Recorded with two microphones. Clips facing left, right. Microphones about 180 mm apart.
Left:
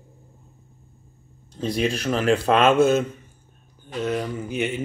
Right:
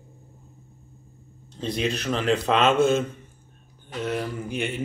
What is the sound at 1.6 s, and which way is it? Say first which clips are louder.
Speech: left 3 dB; 10° left (ahead or behind).